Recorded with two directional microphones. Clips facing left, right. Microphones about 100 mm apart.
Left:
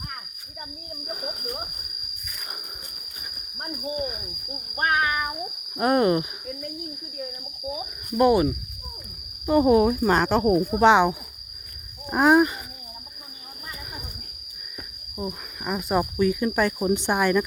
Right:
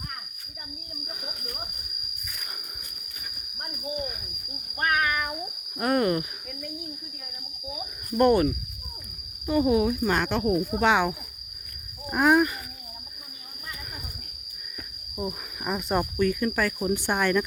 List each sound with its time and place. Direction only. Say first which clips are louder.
1.0 s a sound: left 8 dB; 40° left (ahead or behind)
3.6 s speech: left 4 dB; 35° left (ahead or behind)
4.7 s speech: left 2 dB; 25° left (ahead or behind)
8.1 s cricket: left 1 dB; 10° left (ahead or behind)
9.5 s speech: left 4 dB; 45° left (ahead or behind); by 11.1 s 25° left (ahead or behind)
12.1 s speech: left 3 dB; 25° left (ahead or behind)
15.2 s cricket: even; centre (ahead or behind)